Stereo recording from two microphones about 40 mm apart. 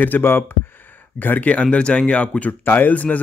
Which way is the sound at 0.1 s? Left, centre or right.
Left.